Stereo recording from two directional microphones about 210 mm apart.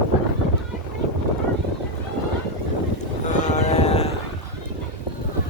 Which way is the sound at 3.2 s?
35° left (ahead or behind).